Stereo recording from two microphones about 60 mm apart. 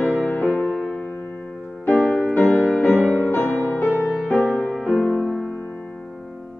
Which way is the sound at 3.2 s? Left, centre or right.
Left.